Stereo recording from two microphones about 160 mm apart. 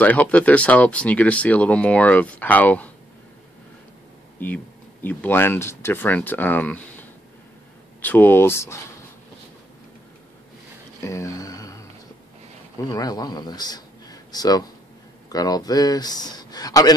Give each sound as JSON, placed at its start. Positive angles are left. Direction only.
{"t": 0.0, "sound": "speech", "side_deg": 10}
{"t": 5.0, "sound": "speech", "side_deg": 10}
{"t": 11.1, "sound": "a sound", "side_deg": 20}
{"t": 12.8, "sound": "speech", "side_deg": 25}